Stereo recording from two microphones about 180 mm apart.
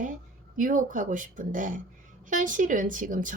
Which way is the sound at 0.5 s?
45° right (ahead or behind).